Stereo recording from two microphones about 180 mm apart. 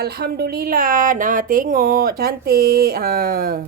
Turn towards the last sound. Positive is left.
turn(degrees=-55)  # may be behind; listen again after turning